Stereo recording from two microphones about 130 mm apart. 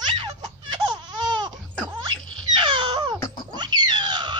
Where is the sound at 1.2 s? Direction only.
40° right (ahead or behind).